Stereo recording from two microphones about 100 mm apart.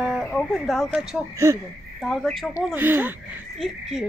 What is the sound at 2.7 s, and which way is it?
Speech, 20° right (ahead or behind).